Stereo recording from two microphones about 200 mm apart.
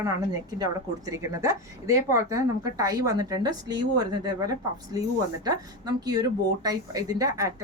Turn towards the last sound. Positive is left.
turn(degrees=-15)  # may be behind; listen again after turning